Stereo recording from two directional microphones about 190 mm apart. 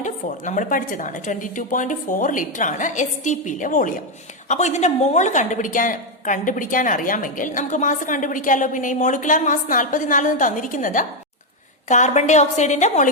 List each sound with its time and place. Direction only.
0.0 s a woman's voice: 40° left (ahead or behind)